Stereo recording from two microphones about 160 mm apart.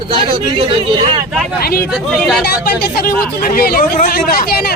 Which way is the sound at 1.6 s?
75° left (ahead or behind).